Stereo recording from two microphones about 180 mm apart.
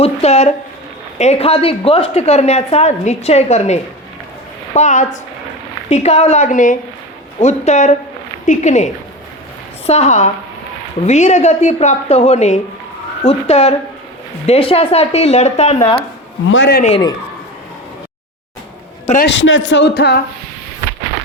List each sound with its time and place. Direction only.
0.0 s a woman's voice: 35° left (ahead or behind)
16.5 s speech: 80° left
19.2 s speech: 90° left; by 20.1 s 65° left (ahead or behind)